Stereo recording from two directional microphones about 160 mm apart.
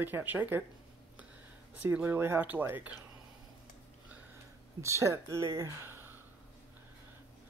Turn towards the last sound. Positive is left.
turn(degrees=-15)  # may be behind; listen again after turning